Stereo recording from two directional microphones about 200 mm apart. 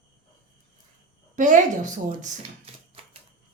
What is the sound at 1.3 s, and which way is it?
A woman's voice, 40° right (ahead or behind).